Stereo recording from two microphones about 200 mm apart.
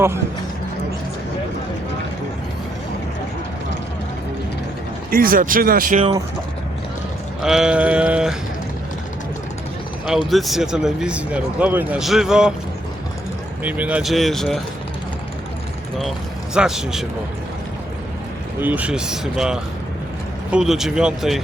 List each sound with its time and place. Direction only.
5.1 s speech: 45° right (ahead or behind)
7.4 s speech: 5° right (ahead or behind)
10.2 s speech: centre (ahead or behind)
13.7 s speech: 5° right (ahead or behind)
16.6 s speech: 5° right (ahead or behind)
18.6 s speech: 5° right (ahead or behind)